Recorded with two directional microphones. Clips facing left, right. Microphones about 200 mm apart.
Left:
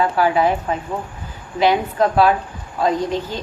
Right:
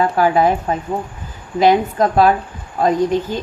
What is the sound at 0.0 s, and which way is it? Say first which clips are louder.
A woman's voice: right 2 dB; 45° right (ahead or behind).